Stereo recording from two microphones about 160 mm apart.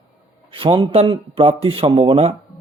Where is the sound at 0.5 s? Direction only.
30° right (ahead or behind).